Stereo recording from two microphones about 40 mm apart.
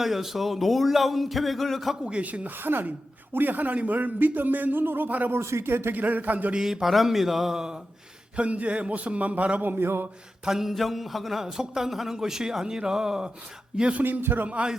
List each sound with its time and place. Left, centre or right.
0.0 s a man's voice: centre
2.2 s a man's voice: right
2.6 s a man's voice: right
5.3 s speech: right
5.9 s a man's voice: right
6.5 s a man's voice: centre
8.4 s a man's voice: right
9.6 s speech: right
10.4 s a man's voice: centre
14.0 s a man's voice: right
14.4 s a man's voice: right